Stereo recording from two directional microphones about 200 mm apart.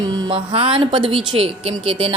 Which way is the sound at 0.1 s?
25° right (ahead or behind).